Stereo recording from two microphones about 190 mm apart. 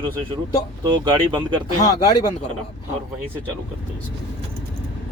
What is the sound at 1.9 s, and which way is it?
Speech, 20° left (ahead or behind).